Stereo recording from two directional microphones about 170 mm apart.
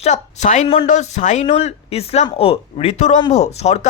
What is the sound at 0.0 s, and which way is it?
A woman's voice, 45° left (ahead or behind).